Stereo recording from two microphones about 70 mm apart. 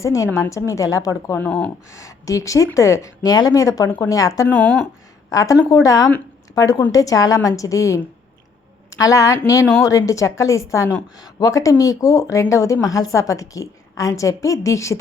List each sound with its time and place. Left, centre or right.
0.0 s speech: left
3.2 s a woman's voice: left
4.4 s speech: centre
5.3 s a woman's voice: left
11.2 s speech: left